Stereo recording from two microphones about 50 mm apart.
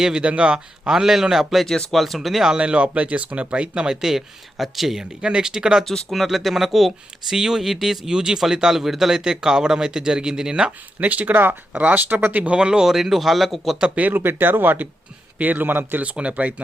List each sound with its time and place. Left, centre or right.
0.0 s speech: centre
2.5 s speech: right; by 5.0 s centre
5.2 s speech: centre
5.8 s speech: centre
11.0 s speech: right
12.5 s speech: centre
12.9 s speech: centre
14.1 s speech: right
16.0 s speech: right